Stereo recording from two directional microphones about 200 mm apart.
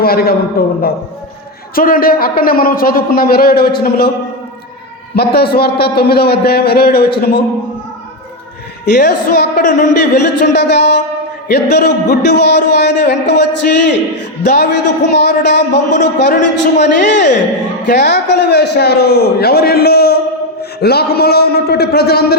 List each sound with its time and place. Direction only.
0.0 s a man's voice: 50° left (ahead or behind)
5.1 s a man's voice: 50° left (ahead or behind)
8.8 s a man's voice: 55° left (ahead or behind); by 9.9 s 40° left (ahead or behind)
10.5 s a man's voice: 60° left (ahead or behind)